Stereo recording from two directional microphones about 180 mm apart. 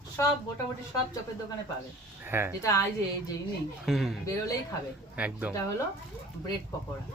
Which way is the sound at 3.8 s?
Centre (ahead or behind).